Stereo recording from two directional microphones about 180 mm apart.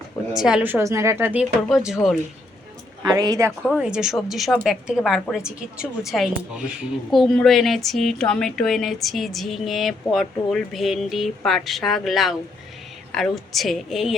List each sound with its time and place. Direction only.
0.3 s a woman's voice: 5° right (ahead or behind)
3.0 s speech: 20° right (ahead or behind)
3.8 s a woman's voice: 5° right (ahead or behind)